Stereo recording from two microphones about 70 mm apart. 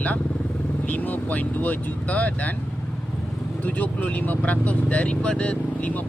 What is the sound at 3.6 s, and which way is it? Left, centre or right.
Speech, left.